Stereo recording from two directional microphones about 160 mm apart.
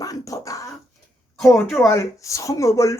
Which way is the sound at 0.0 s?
20° left (ahead or behind).